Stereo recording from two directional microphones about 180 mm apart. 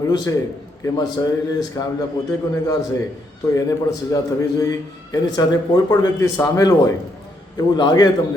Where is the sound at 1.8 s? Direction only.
20° left (ahead or behind).